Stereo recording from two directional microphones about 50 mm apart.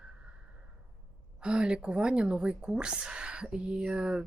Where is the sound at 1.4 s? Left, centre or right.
Centre.